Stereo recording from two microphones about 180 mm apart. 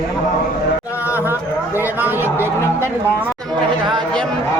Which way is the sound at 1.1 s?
10° right (ahead or behind).